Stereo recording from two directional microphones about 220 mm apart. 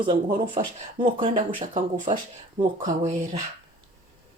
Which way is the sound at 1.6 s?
35° right (ahead or behind).